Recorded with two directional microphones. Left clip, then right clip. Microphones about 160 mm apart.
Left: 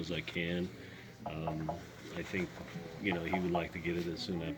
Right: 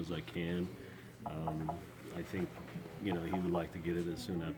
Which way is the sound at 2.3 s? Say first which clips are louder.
Left 3 dB; 30° right (ahead or behind).